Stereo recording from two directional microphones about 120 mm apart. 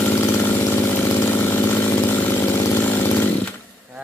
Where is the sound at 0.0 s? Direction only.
20° left (ahead or behind).